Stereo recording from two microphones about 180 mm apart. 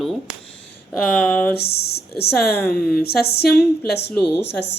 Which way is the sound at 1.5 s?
60° left (ahead or behind).